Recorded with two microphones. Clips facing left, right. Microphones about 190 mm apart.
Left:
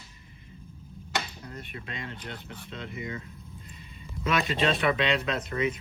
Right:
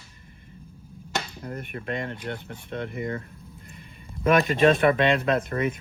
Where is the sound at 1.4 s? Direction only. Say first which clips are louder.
Right 7 dB; 55° right (ahead or behind).